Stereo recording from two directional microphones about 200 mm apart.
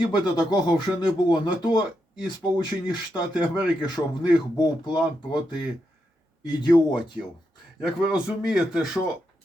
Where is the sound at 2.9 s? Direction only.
20° left (ahead or behind).